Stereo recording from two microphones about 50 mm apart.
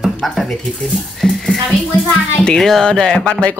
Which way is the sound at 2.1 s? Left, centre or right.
Centre.